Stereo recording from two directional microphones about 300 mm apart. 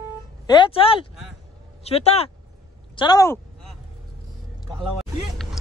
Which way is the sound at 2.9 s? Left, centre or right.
Centre.